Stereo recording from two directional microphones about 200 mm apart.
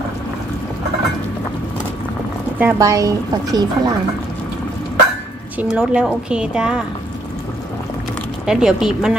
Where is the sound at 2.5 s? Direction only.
10° right (ahead or behind).